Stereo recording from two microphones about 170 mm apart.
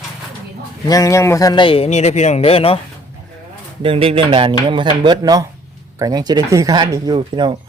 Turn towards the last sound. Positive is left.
turn(degrees=-25)  # may be behind; listen again after turning